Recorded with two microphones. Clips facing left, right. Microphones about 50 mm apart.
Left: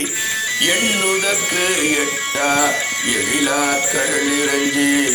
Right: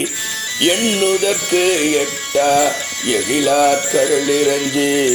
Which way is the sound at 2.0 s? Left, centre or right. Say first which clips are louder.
Right 3 dB; left.